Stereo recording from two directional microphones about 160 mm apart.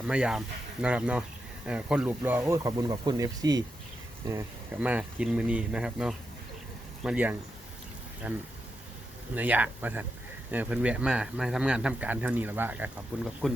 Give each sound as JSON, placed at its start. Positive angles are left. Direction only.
{"t": 0.1, "sound": "speech", "side_deg": -5}
{"t": 4.8, "sound": "speech", "side_deg": -10}